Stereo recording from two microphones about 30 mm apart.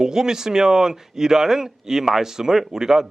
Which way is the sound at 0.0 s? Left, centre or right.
Right.